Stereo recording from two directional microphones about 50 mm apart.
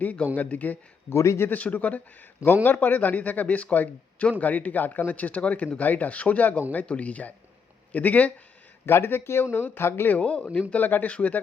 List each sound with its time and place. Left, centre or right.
0.0 s a man's voice: left
1.1 s a man's voice: left
1.5 s a man's voice: left
2.4 s a man's voice: right
2.7 s a man's voice: left
8.9 s speech: left
10.1 s speech: left
10.8 s a man's voice: left